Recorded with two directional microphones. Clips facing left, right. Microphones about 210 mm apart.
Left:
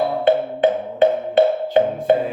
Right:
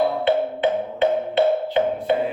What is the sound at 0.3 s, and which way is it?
Music, 45° left (ahead or behind).